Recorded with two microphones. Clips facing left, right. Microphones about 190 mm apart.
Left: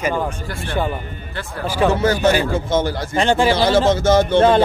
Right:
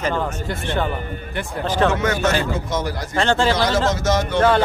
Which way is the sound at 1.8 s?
30° left (ahead or behind).